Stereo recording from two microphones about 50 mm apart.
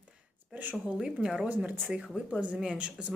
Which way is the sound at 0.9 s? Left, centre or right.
Centre.